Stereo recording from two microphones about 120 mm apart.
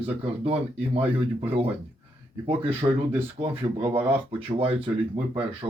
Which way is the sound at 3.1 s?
20° right (ahead or behind).